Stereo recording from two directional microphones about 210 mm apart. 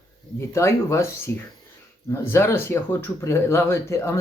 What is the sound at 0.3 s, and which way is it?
Speech, 15° left (ahead or behind).